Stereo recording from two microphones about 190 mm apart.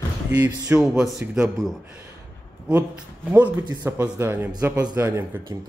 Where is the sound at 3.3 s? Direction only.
10° right (ahead or behind).